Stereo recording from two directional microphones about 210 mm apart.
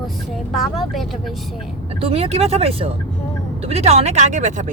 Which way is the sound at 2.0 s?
25° right (ahead or behind).